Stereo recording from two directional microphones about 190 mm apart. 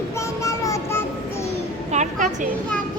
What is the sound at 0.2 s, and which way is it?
Child singing, 15° left (ahead or behind).